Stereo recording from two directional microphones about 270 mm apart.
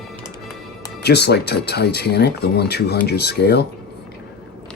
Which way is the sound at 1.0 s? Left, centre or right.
Left.